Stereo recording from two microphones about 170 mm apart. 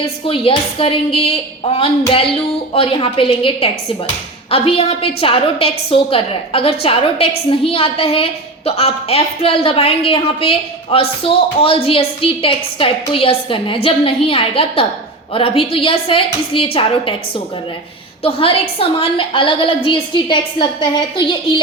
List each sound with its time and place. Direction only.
0.0 s a woman's voice: 35° left (ahead or behind)